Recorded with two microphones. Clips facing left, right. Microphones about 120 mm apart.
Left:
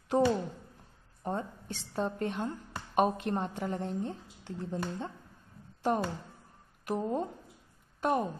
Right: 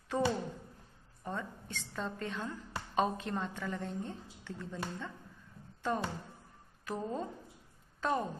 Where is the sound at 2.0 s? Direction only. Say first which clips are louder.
Left 5 dB; 20° left (ahead or behind); by 5.1 s 35° left (ahead or behind).